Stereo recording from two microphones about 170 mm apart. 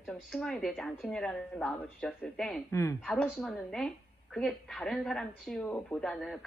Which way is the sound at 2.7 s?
15° left (ahead or behind).